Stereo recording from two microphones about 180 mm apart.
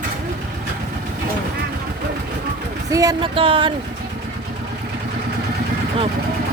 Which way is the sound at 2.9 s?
20° right (ahead or behind).